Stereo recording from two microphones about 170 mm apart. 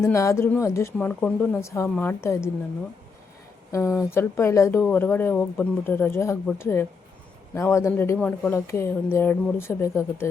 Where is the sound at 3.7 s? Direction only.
15° left (ahead or behind).